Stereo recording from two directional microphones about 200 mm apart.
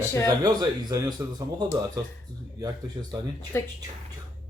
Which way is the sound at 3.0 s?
25° right (ahead or behind).